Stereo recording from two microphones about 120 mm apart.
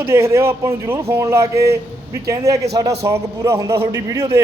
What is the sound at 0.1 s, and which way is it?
A man's voice, 20° right (ahead or behind).